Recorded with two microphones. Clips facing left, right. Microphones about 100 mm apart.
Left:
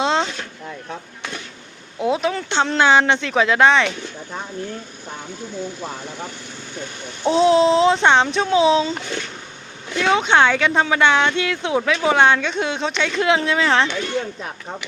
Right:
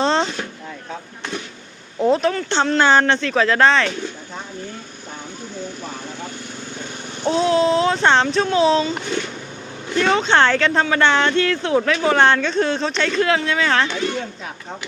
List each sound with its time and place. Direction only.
0.0 s a sound: 5° left (ahead or behind)
2.0 s speech: 10° left (ahead or behind)
7.3 s speech: 25° left (ahead or behind)
10.0 s speech: 10° left (ahead or behind)